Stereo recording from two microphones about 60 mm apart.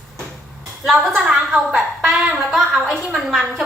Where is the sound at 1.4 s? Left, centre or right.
Centre.